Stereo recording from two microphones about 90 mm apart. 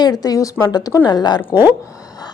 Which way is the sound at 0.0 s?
45° left (ahead or behind).